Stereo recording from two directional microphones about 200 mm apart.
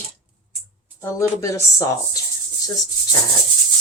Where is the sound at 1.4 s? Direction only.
15° left (ahead or behind).